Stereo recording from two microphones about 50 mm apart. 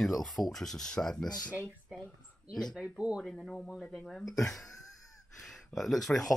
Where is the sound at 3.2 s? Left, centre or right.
Centre.